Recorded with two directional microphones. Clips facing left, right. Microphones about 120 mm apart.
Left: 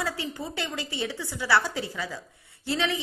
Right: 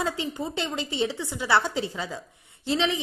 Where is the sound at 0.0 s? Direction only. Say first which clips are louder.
Right 3 dB; 20° right (ahead or behind).